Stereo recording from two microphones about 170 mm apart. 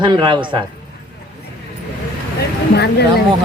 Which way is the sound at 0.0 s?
25° right (ahead or behind).